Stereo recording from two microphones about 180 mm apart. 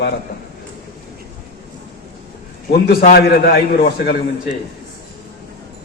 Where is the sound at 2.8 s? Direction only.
55° left (ahead or behind).